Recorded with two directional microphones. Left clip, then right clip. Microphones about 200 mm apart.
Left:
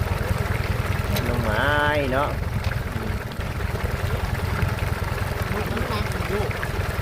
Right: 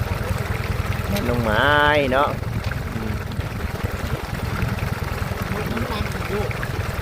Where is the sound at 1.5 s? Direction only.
55° right (ahead or behind).